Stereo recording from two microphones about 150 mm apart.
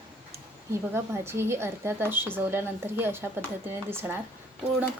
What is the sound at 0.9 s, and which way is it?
A woman's voice, 15° right (ahead or behind).